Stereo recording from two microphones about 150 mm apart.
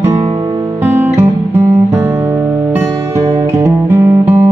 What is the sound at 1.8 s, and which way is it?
Music, 15° right (ahead or behind).